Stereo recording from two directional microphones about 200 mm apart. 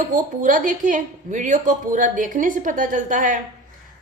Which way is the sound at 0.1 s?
40° right (ahead or behind).